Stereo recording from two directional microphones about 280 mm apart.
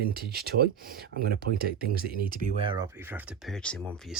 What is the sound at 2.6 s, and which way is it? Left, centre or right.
Speech, centre.